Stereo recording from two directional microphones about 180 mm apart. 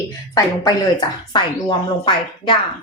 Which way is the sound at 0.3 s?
20° left (ahead or behind).